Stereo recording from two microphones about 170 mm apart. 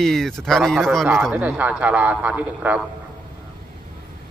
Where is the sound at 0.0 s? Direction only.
Centre (ahead or behind).